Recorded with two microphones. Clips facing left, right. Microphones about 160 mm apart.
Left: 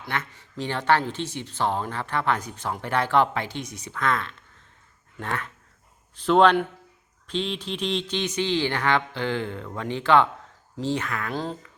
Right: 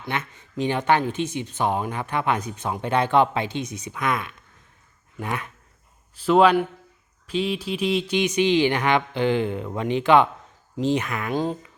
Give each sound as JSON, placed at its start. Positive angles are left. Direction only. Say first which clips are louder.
{"t": 0.0, "sound": "a man's voice", "louder": "right 2 dB", "side_deg": -20}